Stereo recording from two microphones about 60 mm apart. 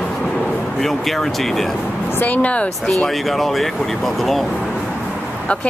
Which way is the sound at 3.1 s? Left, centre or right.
Centre.